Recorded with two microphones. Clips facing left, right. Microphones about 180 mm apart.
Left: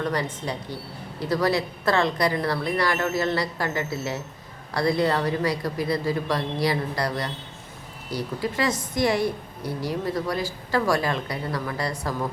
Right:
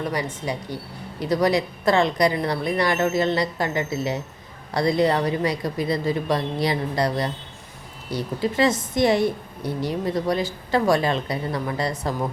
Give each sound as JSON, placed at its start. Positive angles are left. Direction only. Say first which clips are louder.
{"t": 0.0, "sound": "a woman's voice", "louder": "even", "side_deg": -10}